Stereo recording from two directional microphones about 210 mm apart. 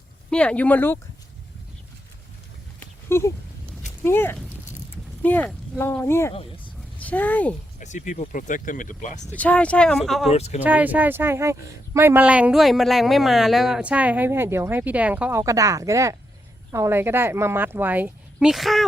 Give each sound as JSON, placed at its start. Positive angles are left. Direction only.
{"t": 0.3, "sound": "speech", "side_deg": 5}
{"t": 2.8, "sound": "a sound", "side_deg": 10}
{"t": 4.0, "sound": "speech", "side_deg": 10}
{"t": 7.8, "sound": "speech", "side_deg": 35}
{"t": 9.3, "sound": "speech", "side_deg": 5}
{"t": 10.3, "sound": "speech", "side_deg": 30}
{"t": 10.6, "sound": "a man's voice", "side_deg": -5}